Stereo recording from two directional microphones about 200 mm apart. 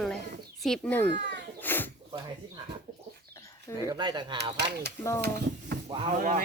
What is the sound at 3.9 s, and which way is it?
Speech, 20° right (ahead or behind).